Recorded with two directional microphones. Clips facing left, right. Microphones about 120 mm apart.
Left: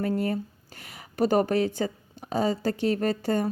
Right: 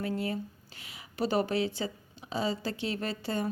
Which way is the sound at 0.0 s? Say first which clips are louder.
Left 6 dB; 50° left (ahead or behind).